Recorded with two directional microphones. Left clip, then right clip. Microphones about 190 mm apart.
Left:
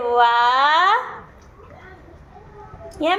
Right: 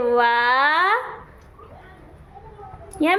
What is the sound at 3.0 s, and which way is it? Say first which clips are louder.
Speech: even; 30° right (ahead or behind).